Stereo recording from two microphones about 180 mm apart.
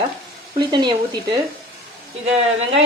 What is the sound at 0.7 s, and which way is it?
Speech, 25° right (ahead or behind).